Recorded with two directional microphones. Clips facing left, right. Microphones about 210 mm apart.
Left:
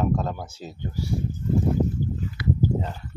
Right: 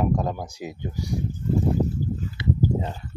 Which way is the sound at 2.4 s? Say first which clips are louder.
Even; 25° right (ahead or behind).